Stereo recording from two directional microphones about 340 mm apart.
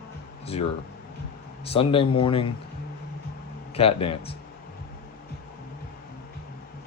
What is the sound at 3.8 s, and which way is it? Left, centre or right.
Speech, centre.